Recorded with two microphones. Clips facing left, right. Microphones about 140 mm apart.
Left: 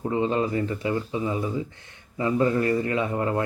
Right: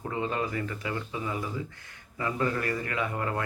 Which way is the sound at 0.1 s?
25° left (ahead or behind).